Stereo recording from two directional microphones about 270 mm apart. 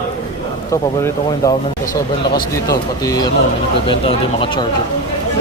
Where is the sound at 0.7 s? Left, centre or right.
Centre.